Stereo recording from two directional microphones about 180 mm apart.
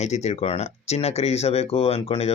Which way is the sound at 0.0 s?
40° left (ahead or behind).